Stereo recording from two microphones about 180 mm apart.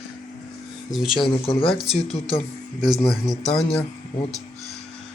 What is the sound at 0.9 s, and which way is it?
Speech, centre (ahead or behind).